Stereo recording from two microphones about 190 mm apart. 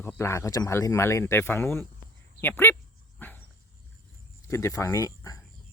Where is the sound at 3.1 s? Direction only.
10° left (ahead or behind).